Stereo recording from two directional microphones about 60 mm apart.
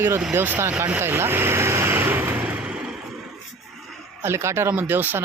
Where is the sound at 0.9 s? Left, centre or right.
Right.